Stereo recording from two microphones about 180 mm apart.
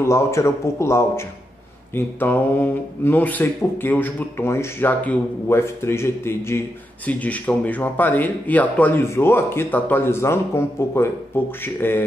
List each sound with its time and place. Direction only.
0.0 s speech: 15° left (ahead or behind)